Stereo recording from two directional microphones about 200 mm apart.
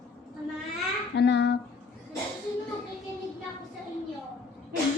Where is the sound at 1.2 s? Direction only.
60° left (ahead or behind).